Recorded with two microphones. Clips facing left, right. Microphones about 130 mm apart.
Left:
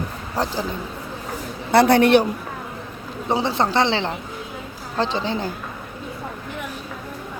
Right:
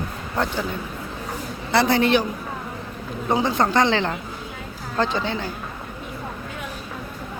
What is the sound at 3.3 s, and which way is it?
Speech, 25° left (ahead or behind).